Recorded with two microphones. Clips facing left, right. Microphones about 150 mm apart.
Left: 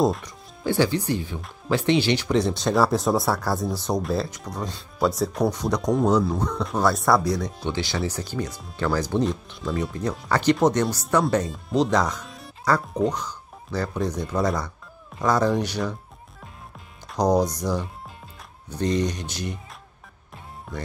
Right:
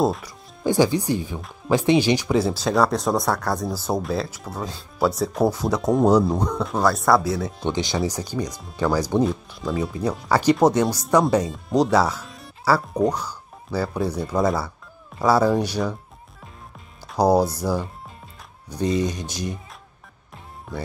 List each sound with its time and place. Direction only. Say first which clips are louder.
0.0 s speech: even; centre (ahead or behind)
0.7 s speech: right 3 dB; 15° right (ahead or behind)
6.6 s speech: even; centre (ahead or behind)
7.6 s speech: right 6 dB; 15° right (ahead or behind)
17.1 s speech: right 3 dB; 10° right (ahead or behind)